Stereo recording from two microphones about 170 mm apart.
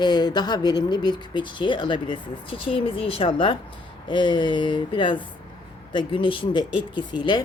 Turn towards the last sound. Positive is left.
turn(degrees=25)  # may be behind; listen again after turning